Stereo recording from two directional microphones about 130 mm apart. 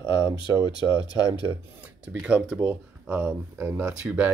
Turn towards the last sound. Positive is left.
turn(degrees=-10)  # may be behind; listen again after turning